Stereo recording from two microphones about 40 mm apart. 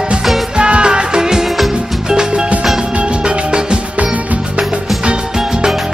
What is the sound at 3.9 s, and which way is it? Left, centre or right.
Music, right.